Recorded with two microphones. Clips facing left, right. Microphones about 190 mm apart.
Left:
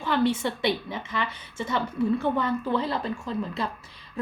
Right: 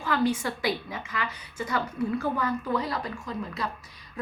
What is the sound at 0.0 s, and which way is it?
Speech, 25° left (ahead or behind).